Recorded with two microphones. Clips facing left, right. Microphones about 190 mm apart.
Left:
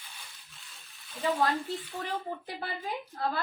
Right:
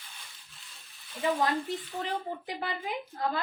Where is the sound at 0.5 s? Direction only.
Centre (ahead or behind).